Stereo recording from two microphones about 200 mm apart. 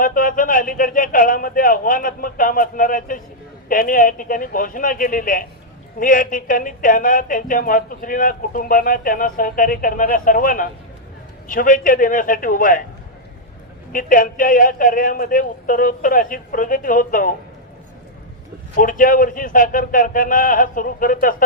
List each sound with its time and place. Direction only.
0.0 s a woman's voice: 45° left (ahead or behind)
13.9 s a woman's voice: 45° left (ahead or behind)
18.7 s a woman's voice: 45° left (ahead or behind)